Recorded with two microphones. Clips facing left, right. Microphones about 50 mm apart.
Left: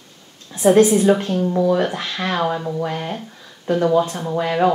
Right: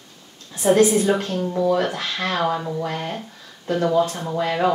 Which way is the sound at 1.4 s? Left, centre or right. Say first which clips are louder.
Left 4 dB; centre.